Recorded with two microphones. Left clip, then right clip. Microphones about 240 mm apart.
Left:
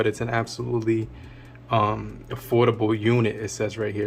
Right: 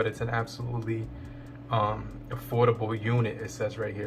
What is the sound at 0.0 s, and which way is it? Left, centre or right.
Speech, left.